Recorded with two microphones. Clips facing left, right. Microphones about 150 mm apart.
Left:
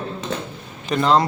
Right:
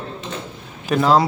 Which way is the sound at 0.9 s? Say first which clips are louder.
Right 2 dB; 5° right (ahead or behind).